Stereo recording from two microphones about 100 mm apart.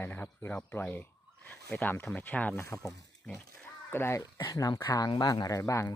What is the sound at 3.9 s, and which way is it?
Speech, 25° left (ahead or behind).